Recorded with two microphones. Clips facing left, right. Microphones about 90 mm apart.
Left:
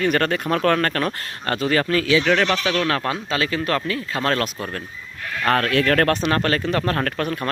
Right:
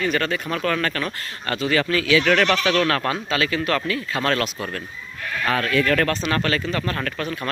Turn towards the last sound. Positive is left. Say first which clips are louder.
# left 4 dB
turn(degrees=45)  # may be behind; listen again after turning